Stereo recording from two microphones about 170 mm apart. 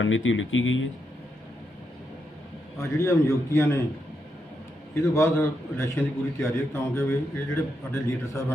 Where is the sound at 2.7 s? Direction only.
15° left (ahead or behind).